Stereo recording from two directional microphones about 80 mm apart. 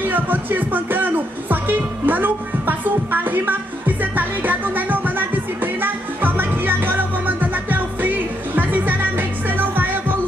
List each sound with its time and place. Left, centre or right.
0.1 s music: right